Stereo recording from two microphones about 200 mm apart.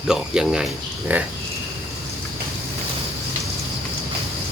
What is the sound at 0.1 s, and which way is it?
Speech, 5° right (ahead or behind).